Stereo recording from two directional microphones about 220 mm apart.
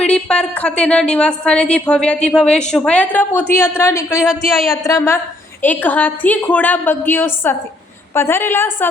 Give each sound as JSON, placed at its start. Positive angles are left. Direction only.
{"t": 0.0, "sound": "a woman's voice", "side_deg": 5}
{"t": 4.2, "sound": "a woman's voice", "side_deg": 0}
{"t": 4.8, "sound": "a woman's voice", "side_deg": 15}